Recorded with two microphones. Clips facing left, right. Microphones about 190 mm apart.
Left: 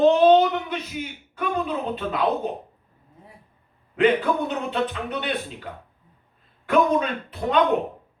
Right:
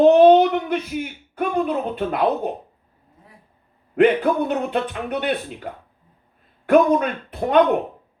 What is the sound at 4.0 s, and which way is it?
A man's voice, 55° right (ahead or behind).